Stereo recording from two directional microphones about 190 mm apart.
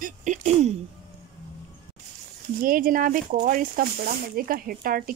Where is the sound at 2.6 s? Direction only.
45° right (ahead or behind).